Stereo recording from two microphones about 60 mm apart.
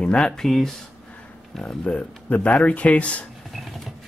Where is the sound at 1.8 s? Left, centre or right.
Left.